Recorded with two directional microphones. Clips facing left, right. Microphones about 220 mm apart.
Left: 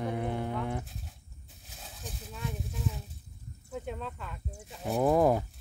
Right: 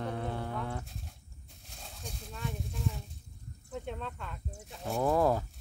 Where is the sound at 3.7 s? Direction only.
5° left (ahead or behind).